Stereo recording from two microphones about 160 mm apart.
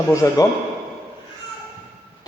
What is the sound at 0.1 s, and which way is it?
Speech, 20° left (ahead or behind).